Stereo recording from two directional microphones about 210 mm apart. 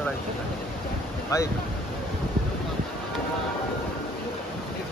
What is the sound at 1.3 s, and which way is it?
Speech, 15° left (ahead or behind).